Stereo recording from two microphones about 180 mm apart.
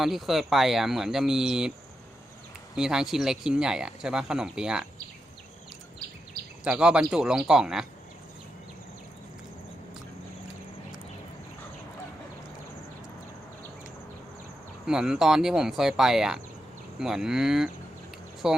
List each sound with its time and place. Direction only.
0.0 s speech: centre (ahead or behind)
2.7 s speech: 5° right (ahead or behind)
6.7 s speech: 5° right (ahead or behind)
14.8 s speech: 5° right (ahead or behind)